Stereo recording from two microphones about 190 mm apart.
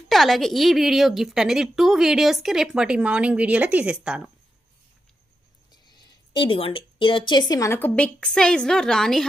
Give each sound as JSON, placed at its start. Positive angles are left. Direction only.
{"t": 0.1, "sound": "a woman's voice", "side_deg": 0}
{"t": 5.7, "sound": "a sound", "side_deg": 20}
{"t": 6.4, "sound": "a woman's voice", "side_deg": 25}